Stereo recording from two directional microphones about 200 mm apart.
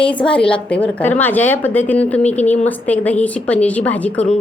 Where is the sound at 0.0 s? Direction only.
5° left (ahead or behind).